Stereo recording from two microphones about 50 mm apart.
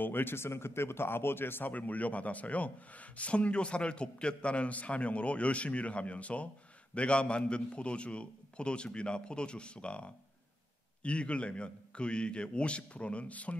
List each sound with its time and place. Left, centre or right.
0.0 s speech: left
1.7 s speech: left